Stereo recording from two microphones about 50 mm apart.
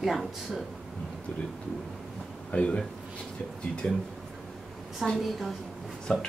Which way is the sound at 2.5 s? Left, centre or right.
Left.